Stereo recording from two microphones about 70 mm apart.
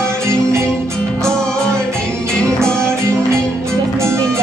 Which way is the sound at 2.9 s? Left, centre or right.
Right.